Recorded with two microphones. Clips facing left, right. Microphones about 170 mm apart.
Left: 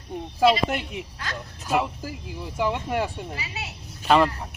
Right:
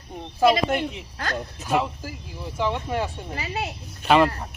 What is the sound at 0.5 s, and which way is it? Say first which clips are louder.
Speech: right 3 dB; 45° right (ahead or behind).